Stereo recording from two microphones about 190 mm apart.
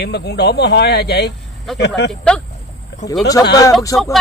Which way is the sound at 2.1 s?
5° left (ahead or behind).